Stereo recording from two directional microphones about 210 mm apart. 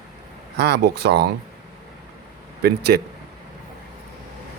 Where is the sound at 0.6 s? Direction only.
50° right (ahead or behind).